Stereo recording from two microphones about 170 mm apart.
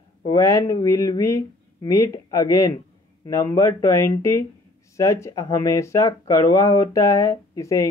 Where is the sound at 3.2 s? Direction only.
20° left (ahead or behind).